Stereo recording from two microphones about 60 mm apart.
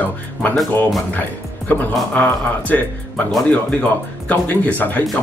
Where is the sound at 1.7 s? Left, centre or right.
Left.